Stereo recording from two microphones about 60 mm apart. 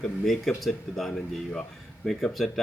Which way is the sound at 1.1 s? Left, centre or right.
Centre.